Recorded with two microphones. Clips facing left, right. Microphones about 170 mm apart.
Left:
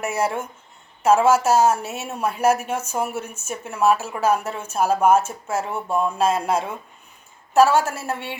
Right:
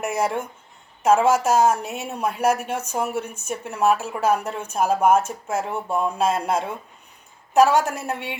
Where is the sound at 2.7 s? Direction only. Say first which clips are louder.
Left 1 dB; 15° right (ahead or behind).